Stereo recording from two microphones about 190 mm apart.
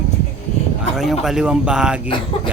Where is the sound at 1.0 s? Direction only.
Centre (ahead or behind).